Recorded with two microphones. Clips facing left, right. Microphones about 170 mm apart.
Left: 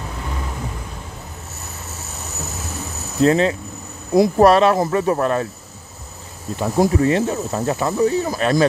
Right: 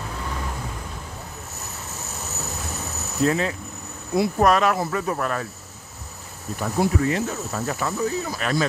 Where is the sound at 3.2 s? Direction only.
25° left (ahead or behind).